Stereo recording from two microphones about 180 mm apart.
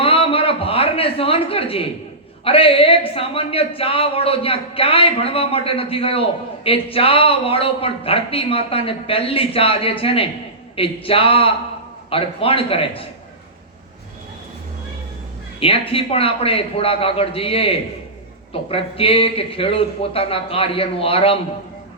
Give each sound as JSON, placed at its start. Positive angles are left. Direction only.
{"t": 0.0, "sound": "a sound", "side_deg": 30}
{"t": 2.4, "sound": "a woman's voice", "side_deg": 30}
{"t": 15.6, "sound": "a woman's voice", "side_deg": 30}